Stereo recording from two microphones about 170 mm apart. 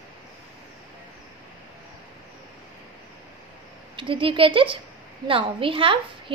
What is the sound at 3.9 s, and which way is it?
A woman's voice, 30° right (ahead or behind).